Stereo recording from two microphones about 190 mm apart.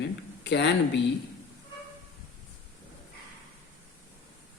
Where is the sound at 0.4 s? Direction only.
65° left (ahead or behind).